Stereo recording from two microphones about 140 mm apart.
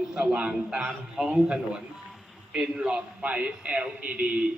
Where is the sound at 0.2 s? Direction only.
10° right (ahead or behind).